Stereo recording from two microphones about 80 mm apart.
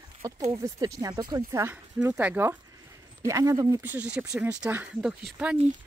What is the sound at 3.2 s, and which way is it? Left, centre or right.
Speech, right.